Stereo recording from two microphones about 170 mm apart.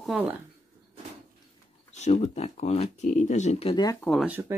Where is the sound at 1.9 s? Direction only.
45° left (ahead or behind).